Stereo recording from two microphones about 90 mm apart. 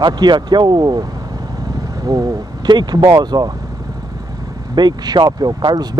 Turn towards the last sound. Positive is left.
turn(degrees=-50)  # may be behind; listen again after turning